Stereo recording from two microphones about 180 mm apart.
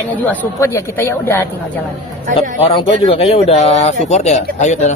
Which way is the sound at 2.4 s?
30° left (ahead or behind).